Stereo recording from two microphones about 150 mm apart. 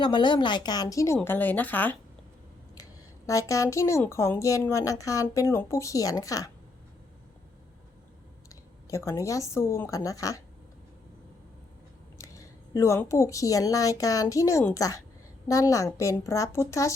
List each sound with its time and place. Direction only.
0.0 s speech: 30° left (ahead or behind); by 2.0 s 10° left (ahead or behind)
3.2 s speech: 20° left (ahead or behind)
8.4 s a woman's voice: 20° left (ahead or behind)
12.1 s speech: 20° left (ahead or behind)